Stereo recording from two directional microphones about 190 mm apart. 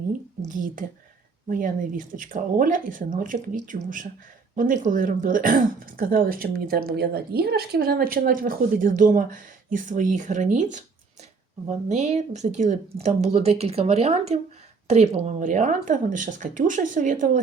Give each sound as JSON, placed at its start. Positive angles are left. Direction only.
{"t": 0.4, "sound": "a woman's voice", "side_deg": -45}